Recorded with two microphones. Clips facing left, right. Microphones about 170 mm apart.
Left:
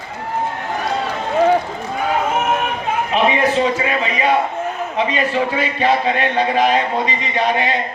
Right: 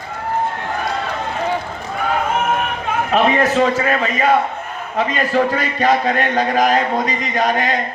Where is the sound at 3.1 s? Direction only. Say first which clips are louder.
Right 2 dB; 45° right (ahead or behind).